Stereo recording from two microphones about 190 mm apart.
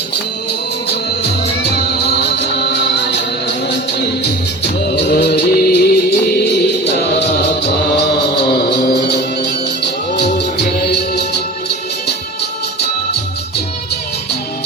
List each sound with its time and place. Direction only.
0.9 s music: 60° left (ahead or behind)
4.2 s music: 60° left (ahead or behind)